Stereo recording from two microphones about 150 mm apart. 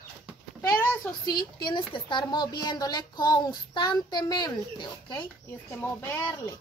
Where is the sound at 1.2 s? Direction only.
30° left (ahead or behind).